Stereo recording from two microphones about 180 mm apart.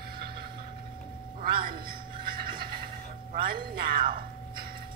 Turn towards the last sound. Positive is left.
turn(degrees=-55)  # may be behind; listen again after turning